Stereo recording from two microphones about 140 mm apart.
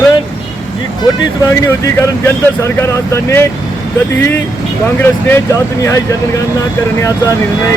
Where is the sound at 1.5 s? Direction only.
20° left (ahead or behind).